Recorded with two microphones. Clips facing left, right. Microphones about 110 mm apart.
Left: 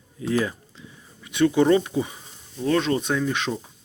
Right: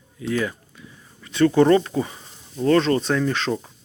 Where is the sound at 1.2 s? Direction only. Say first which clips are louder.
Right 3 dB; 15° left (ahead or behind).